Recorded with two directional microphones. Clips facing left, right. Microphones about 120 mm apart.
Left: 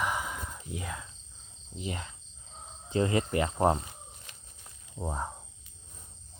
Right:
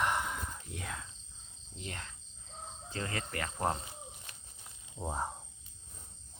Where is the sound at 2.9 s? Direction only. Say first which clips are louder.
Left 12 dB; 20° left (ahead or behind).